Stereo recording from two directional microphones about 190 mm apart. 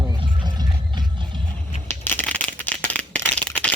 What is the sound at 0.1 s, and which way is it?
Music, 20° right (ahead or behind).